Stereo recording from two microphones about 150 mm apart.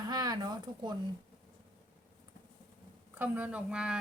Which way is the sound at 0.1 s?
25° right (ahead or behind).